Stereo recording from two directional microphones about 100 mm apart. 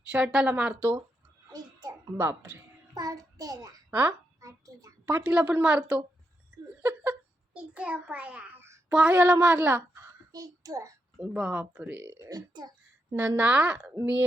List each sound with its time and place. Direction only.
0.1 s a woman's voice: 10° right (ahead or behind)
1.5 s a sound: 45° right (ahead or behind)
2.1 s speech: 20° right (ahead or behind)
2.9 s a child's voice: 35° right (ahead or behind)
4.4 s hands: 35° right (ahead or behind)
5.0 s a woman's voice: 15° right (ahead or behind)
6.8 s a sound: 15° right (ahead or behind)
8.9 s a woman's voice: 10° right (ahead or behind)
10.3 s a child's voice: 35° right (ahead or behind)
11.2 s a woman's voice: 10° right (ahead or behind)
12.1 s a woman's voice: 45° right (ahead or behind)
13.1 s a woman's voice: 15° right (ahead or behind)